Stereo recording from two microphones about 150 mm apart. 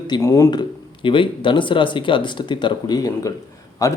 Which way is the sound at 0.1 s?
20° left (ahead or behind).